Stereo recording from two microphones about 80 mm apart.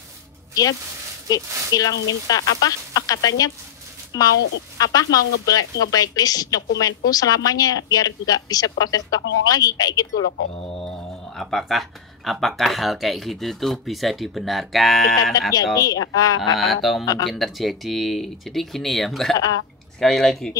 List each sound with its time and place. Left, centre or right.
1.3 s speech: left
10.8 s speech: centre
15.5 s speech: left
16.5 s speech: centre